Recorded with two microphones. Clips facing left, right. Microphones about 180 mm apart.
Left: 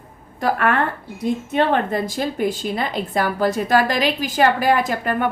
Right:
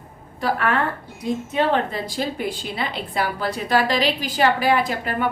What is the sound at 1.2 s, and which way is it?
A woman's voice, 50° left (ahead or behind).